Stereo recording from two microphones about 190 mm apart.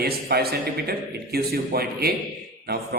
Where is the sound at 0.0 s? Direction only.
55° right (ahead or behind).